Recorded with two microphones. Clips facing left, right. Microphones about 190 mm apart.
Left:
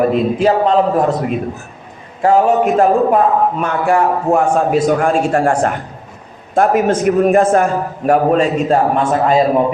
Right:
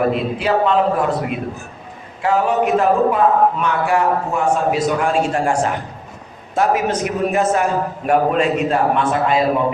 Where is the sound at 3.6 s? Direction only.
50° left (ahead or behind).